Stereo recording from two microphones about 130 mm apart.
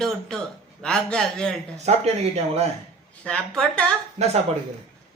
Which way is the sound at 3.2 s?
5° left (ahead or behind).